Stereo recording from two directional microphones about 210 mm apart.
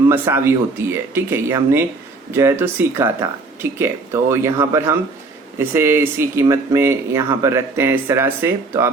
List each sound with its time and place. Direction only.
0.1 s speech: 10° right (ahead or behind)